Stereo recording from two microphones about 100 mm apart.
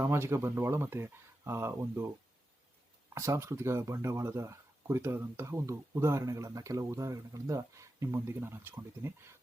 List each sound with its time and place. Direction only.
0.0 s speech: 25° right (ahead or behind)
3.2 s speech: 30° right (ahead or behind)